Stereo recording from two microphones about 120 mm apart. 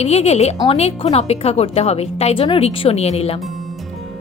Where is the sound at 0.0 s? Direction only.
60° left (ahead or behind).